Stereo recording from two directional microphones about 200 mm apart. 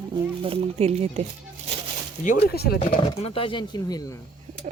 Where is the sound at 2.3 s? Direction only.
50° left (ahead or behind).